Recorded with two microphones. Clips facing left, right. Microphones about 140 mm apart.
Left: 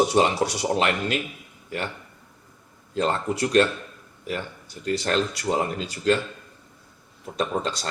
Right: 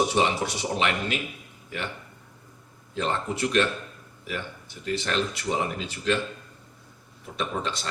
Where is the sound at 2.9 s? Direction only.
40° left (ahead or behind).